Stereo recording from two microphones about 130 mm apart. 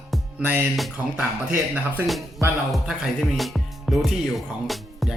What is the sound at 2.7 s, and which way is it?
Speech, 5° right (ahead or behind).